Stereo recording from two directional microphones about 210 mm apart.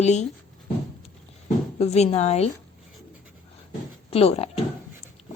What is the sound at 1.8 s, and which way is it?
Speech, 30° left (ahead or behind).